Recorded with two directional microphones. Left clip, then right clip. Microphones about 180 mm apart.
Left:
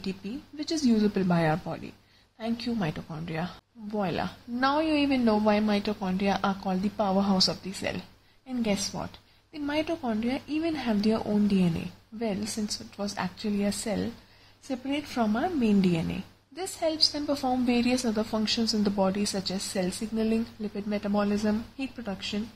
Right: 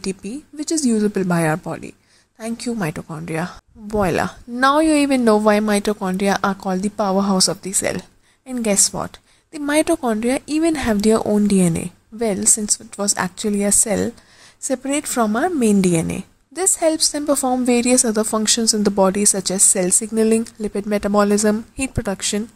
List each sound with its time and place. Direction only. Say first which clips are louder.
0.6 s a woman's voice: right 7 dB; 35° right (ahead or behind); by 22.4 s 50° right (ahead or behind)